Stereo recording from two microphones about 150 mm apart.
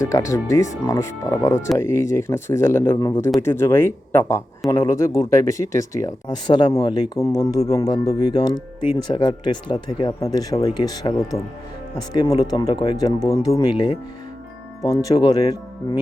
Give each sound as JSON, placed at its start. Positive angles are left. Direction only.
{"t": 0.0, "sound": "speech", "side_deg": 20}
{"t": 6.7, "sound": "speech", "side_deg": 40}
{"t": 6.9, "sound": "speech", "side_deg": 25}